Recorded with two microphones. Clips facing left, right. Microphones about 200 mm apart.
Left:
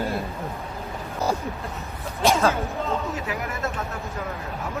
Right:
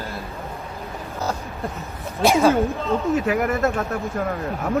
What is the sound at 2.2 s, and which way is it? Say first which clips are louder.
Speech: right 4 dB; 15° right (ahead or behind).